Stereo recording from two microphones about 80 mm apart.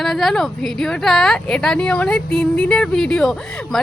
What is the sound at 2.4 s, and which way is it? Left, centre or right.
Music, centre.